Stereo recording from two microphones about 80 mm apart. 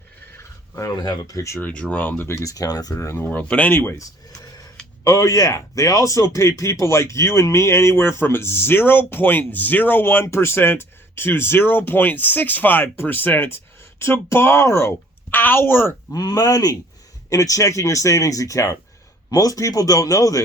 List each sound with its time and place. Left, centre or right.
0.9 s speech: left
1.6 s speech: centre; by 3.2 s left
3.2 s speech: centre
3.9 s a sound: left
5.0 s speech: left
16.1 s speech: left